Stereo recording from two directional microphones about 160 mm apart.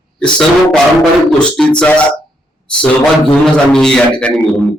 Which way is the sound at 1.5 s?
5° left (ahead or behind).